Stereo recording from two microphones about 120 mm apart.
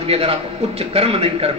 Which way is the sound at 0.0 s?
55° right (ahead or behind).